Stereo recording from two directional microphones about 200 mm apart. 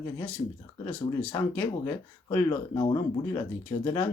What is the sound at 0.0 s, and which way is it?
Speech, 5° left (ahead or behind).